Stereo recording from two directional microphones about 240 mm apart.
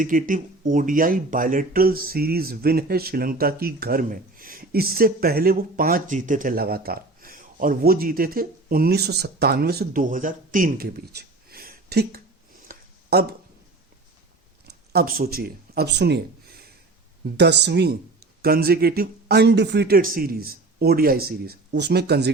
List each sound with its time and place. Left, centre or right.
0.0 s speech: right
12.6 s a sound: right
14.7 s speech: right